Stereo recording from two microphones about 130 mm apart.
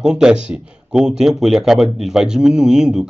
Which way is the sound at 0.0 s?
5° right (ahead or behind).